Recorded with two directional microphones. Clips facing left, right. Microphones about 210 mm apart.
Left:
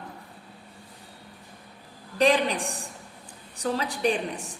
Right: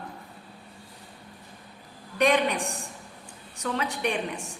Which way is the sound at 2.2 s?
30° left (ahead or behind).